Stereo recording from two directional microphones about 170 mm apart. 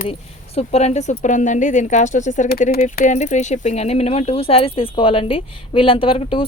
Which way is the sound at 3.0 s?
45° left (ahead or behind).